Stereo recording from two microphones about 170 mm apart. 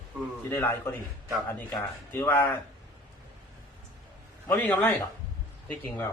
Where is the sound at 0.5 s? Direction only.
10° left (ahead or behind).